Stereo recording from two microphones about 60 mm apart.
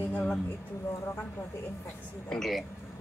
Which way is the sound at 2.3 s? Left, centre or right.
Centre.